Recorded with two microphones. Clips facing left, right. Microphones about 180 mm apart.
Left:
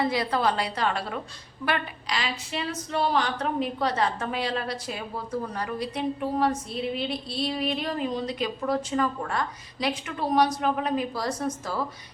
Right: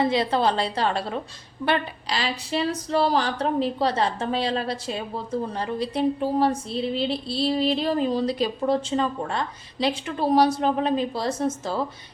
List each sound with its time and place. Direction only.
0.0 s speech: 25° right (ahead or behind)